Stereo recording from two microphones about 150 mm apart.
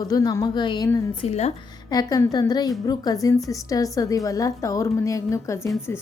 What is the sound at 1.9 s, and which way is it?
A woman's voice, 25° left (ahead or behind).